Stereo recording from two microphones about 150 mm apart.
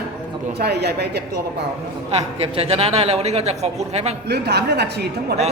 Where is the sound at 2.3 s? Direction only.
40° right (ahead or behind).